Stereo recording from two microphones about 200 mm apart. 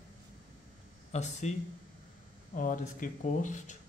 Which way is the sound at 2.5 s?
40° left (ahead or behind).